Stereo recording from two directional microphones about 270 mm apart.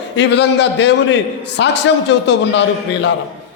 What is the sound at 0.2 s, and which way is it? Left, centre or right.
A man's voice, left.